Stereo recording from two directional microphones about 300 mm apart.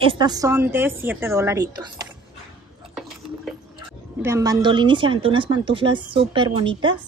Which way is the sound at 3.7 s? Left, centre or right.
Centre.